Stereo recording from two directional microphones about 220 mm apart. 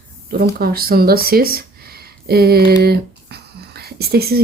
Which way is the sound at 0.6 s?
45° right (ahead or behind).